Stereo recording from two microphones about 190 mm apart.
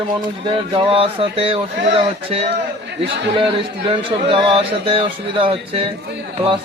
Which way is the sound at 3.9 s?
30° right (ahead or behind).